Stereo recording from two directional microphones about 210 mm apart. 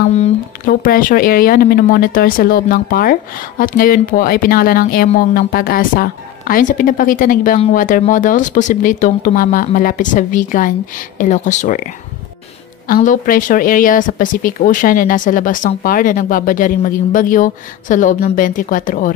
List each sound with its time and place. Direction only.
0.1 s speech: 40° left (ahead or behind)
12.8 s speech: 40° left (ahead or behind)